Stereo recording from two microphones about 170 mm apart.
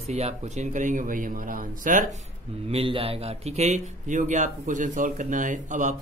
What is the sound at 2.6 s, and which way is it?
Speech, 35° right (ahead or behind).